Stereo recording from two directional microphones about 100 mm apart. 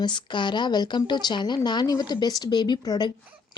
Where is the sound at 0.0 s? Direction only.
50° left (ahead or behind).